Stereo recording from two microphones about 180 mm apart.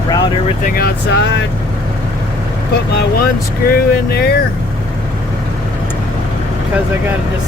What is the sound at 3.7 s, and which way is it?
Speech, 60° left (ahead or behind).